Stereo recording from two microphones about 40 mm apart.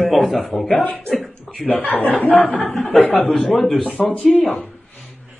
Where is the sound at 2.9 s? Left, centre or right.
Centre.